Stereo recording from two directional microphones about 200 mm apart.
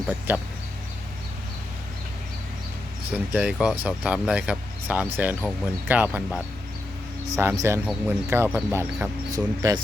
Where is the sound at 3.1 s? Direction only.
5° right (ahead or behind).